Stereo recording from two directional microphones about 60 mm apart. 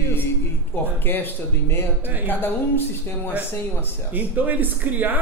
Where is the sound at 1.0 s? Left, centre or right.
Left.